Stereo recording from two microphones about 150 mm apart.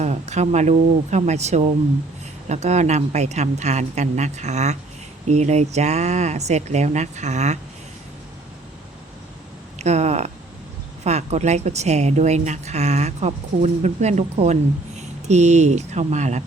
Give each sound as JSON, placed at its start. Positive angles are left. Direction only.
{"t": 0.0, "sound": "a woman's voice", "side_deg": -50}
{"t": 9.7, "sound": "a woman's voice", "side_deg": -50}